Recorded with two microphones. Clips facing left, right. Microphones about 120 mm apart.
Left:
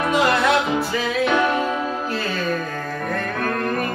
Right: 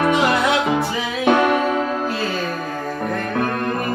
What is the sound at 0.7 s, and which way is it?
Music, 55° right (ahead or behind).